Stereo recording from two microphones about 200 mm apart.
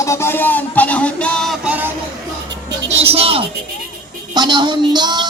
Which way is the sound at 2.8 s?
30° right (ahead or behind).